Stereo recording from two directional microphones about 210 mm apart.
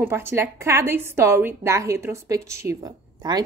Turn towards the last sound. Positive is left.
turn(degrees=-20)  # may be behind; listen again after turning